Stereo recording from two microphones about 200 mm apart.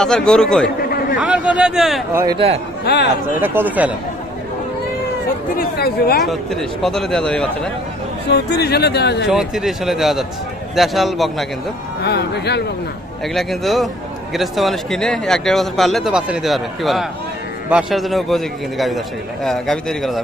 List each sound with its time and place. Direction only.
0.0 s a man's voice: centre (ahead or behind)
0.8 s a sound: 50° left (ahead or behind)
1.2 s a man's voice: 5° right (ahead or behind)
2.1 s speech: 20° right (ahead or behind)
2.8 s speech: 55° left (ahead or behind)
3.4 s speech: 10° right (ahead or behind)
5.5 s speech: 50° left (ahead or behind)
6.2 s a man's voice: centre (ahead or behind)
8.3 s speech: 55° left (ahead or behind)
9.3 s a man's voice: centre (ahead or behind)
12.0 s speech: 55° left (ahead or behind)
13.2 s a man's voice: centre (ahead or behind)